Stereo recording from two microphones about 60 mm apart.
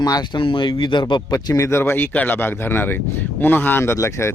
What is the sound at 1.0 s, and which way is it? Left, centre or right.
Speech, left.